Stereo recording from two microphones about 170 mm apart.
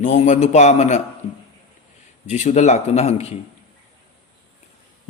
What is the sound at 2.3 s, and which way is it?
A man's voice, 45° left (ahead or behind).